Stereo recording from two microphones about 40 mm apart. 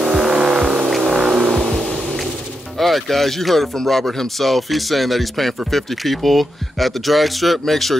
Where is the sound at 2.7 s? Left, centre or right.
Centre.